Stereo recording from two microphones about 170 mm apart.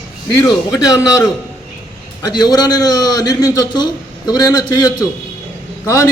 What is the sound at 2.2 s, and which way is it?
A man's voice, 25° left (ahead or behind).